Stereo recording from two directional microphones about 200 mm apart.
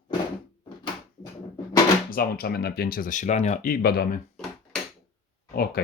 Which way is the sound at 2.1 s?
50° left (ahead or behind).